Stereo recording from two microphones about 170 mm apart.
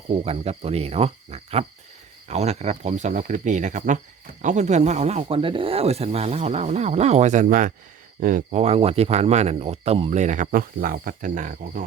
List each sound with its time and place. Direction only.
0.1 s speech: 35° right (ahead or behind)